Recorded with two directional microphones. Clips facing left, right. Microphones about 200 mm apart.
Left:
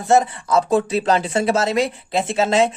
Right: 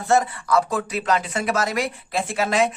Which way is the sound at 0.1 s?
20° left (ahead or behind).